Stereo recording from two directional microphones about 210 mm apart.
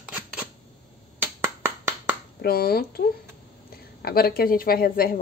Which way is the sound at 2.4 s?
45° left (ahead or behind).